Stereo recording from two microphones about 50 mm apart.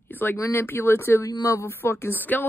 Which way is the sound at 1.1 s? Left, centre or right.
Left.